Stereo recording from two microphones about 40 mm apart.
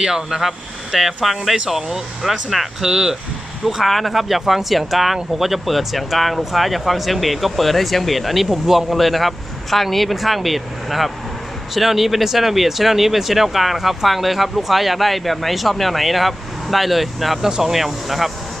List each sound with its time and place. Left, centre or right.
0.1 s speech: centre
2.9 s speech: centre
3.8 s speech: centre